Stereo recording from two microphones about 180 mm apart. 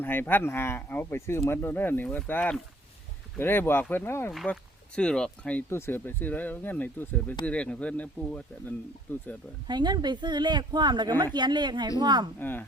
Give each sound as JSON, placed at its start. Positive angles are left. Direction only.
{"t": 0.0, "sound": "speech", "side_deg": 10}
{"t": 4.3, "sound": "speech", "side_deg": 0}
{"t": 9.6, "sound": "speech", "side_deg": -25}
{"t": 12.4, "sound": "speech", "side_deg": 10}